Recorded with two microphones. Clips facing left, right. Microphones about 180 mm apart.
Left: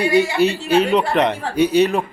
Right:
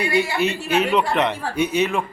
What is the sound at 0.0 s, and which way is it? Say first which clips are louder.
Speech: left 5 dB; 35° left (ahead or behind).